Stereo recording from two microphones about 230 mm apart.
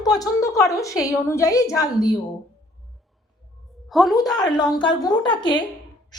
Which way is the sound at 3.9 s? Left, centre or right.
Centre.